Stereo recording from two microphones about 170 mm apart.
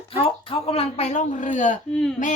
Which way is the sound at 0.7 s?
35° left (ahead or behind).